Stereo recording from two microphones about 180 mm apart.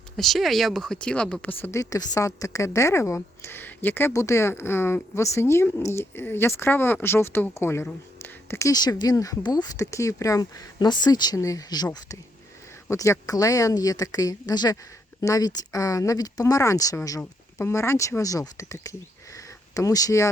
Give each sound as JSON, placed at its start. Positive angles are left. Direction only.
{"t": 0.2, "sound": "speech", "side_deg": 0}